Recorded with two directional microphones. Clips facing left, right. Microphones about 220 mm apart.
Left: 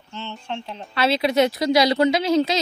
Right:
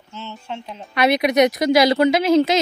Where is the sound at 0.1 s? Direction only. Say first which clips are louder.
Even; 5° right (ahead or behind).